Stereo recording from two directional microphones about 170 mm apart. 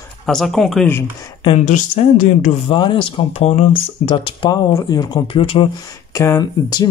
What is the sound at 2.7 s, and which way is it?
Speech, 30° left (ahead or behind).